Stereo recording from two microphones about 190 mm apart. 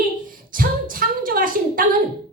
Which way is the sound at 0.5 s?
50° right (ahead or behind).